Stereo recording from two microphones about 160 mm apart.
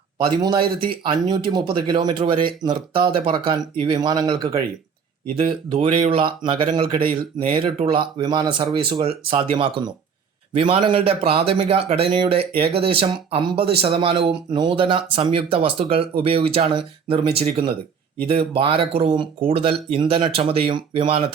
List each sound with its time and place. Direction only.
0.3 s speech: 30° right (ahead or behind)
5.4 s speech: 35° right (ahead or behind)
7.0 s speech: 65° right (ahead or behind)
7.3 s speech: 35° right (ahead or behind)